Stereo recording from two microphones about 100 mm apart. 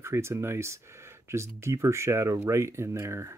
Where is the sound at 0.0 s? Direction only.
25° right (ahead or behind).